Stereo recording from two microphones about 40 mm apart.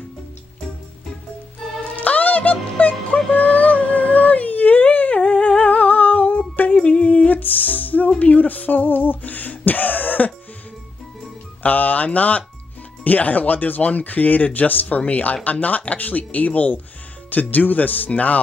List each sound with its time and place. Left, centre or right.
1.9 s music: left
3.3 s a sound: left
6.7 s humming: left
7.2 s music: left
8.2 s a sound: left
11.6 s speech: left